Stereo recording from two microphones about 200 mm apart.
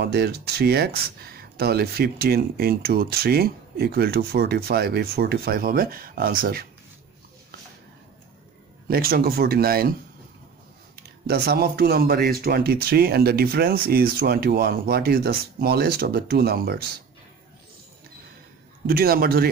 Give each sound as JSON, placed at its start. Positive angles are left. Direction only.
{"t": 0.0, "sound": "speech", "side_deg": -55}
{"t": 8.8, "sound": "speech", "side_deg": -50}
{"t": 11.2, "sound": "speech", "side_deg": -50}
{"t": 18.9, "sound": "speech", "side_deg": -50}